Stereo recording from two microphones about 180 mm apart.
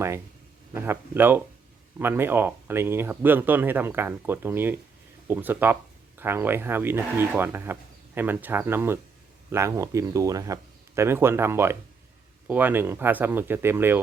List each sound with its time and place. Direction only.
0.7 s speech: 10° right (ahead or behind)